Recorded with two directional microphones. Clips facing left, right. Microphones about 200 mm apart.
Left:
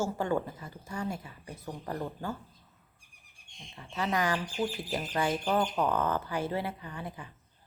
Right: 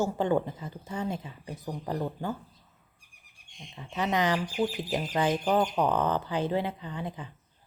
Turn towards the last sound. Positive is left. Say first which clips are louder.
# right 4 dB
turn(degrees=-20)  # may be behind; listen again after turning